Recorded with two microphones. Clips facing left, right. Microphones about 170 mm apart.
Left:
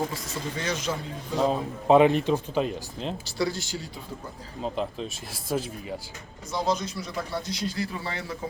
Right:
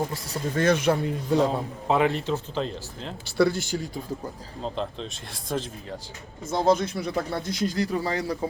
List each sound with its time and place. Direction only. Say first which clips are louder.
0.5 s speech: right 10 dB; 55° right (ahead or behind)
1.9 s speech: left 5 dB; 20° left (ahead or behind)
3.2 s speech: right 9 dB; 60° right (ahead or behind)
4.6 s speech: left 1 dB; 5° left (ahead or behind)
6.5 s speech: right 5 dB; 55° right (ahead or behind); by 8.4 s 40° right (ahead or behind)